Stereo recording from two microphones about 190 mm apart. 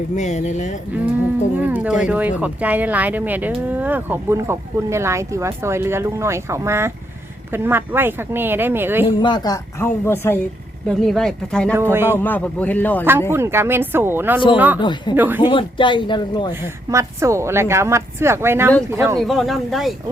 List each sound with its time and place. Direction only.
0.2 s speech: 40° left (ahead or behind)
1.5 s speech: 10° right (ahead or behind)
9.0 s a woman's voice: 20° left (ahead or behind); by 11.7 s 5° left (ahead or behind)
11.7 s speech: 10° right (ahead or behind)
12.1 s speech: 10° left (ahead or behind)
13.3 s speech: 15° right (ahead or behind)
14.8 s a woman's voice: 25° left (ahead or behind)
15.1 s speech: 10° right (ahead or behind)
15.4 s a woman's voice: 25° left (ahead or behind)
16.9 s speech: 15° right (ahead or behind)
19.2 s a woman's voice: centre (ahead or behind)